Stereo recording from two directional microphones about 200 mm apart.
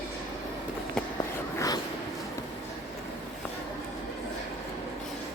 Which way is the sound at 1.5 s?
15° left (ahead or behind).